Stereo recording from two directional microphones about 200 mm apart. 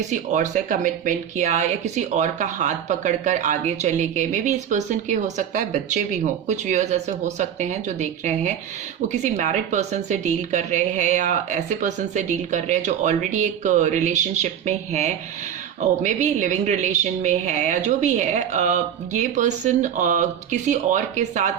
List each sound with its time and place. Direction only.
0.1 s a woman's voice: 40° right (ahead or behind)